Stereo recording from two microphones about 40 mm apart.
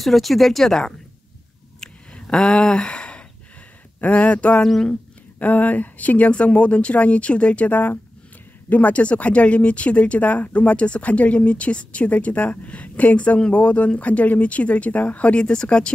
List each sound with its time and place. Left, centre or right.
0.0 s speech: centre
2.1 s speech: left
7.7 s speech: left